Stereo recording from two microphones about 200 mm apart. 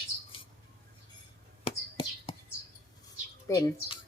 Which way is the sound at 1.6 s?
25° left (ahead or behind).